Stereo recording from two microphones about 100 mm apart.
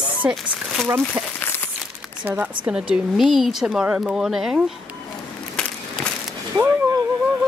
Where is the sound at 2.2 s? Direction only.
15° right (ahead or behind).